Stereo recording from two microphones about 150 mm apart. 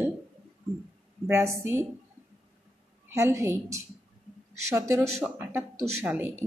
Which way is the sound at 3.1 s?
20° right (ahead or behind).